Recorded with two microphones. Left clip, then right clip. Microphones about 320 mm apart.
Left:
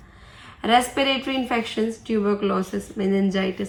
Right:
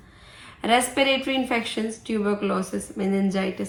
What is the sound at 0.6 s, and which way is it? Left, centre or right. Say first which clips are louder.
A woman's voice: left 1 dB; centre.